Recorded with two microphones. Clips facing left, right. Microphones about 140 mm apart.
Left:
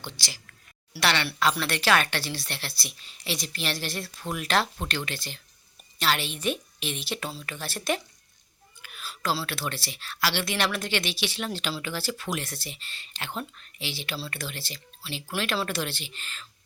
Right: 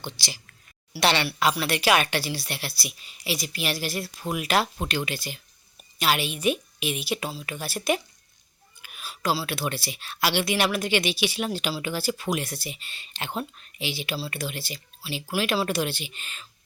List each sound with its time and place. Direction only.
0.0 s speech: 15° right (ahead or behind)
8.8 s a sound: 15° right (ahead or behind)
9.5 s speech: 15° right (ahead or behind)